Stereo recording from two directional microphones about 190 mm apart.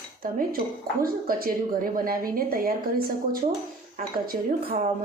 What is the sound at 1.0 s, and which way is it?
A woman's voice, 50° right (ahead or behind).